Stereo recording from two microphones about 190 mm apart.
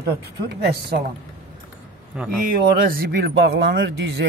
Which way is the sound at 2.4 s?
50° right (ahead or behind).